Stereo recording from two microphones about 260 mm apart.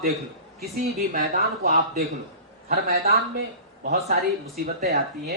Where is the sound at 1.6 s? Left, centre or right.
Right.